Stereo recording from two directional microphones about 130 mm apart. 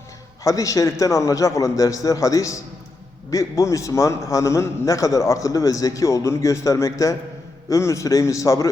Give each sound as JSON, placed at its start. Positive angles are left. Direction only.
{"t": 0.4, "sound": "a man's voice", "side_deg": 25}